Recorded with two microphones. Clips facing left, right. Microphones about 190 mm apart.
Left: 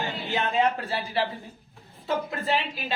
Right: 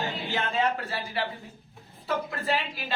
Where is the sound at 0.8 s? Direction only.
30° left (ahead or behind).